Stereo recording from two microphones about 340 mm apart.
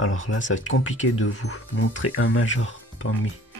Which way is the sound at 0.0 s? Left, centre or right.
Left.